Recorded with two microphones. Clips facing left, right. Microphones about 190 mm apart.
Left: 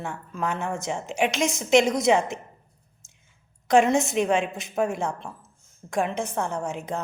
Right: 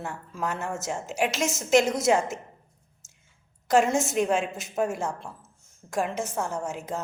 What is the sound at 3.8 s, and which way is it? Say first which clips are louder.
Speech: left 3 dB; 60° left (ahead or behind).